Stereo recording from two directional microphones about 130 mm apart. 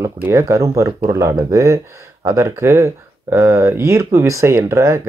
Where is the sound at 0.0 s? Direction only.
20° right (ahead or behind).